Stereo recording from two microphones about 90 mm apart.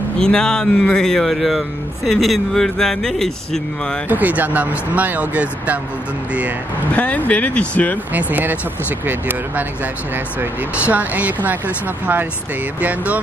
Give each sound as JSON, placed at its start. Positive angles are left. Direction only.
{"t": 0.2, "sound": "speech", "side_deg": 10}
{"t": 4.1, "sound": "speech", "side_deg": -20}
{"t": 6.9, "sound": "speech", "side_deg": 15}
{"t": 8.1, "sound": "speech", "side_deg": -20}
{"t": 12.8, "sound": "speech", "side_deg": -15}